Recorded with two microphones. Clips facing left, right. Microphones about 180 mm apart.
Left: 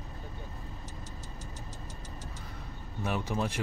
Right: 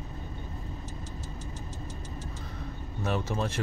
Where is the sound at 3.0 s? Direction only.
15° left (ahead or behind).